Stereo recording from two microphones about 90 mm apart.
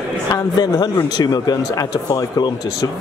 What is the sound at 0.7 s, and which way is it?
Speech, 40° left (ahead or behind).